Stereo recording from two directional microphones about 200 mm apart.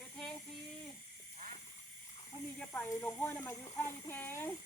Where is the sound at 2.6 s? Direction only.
5° left (ahead or behind).